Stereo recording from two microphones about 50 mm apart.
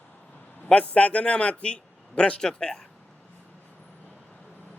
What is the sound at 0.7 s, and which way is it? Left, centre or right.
A man's voice, left.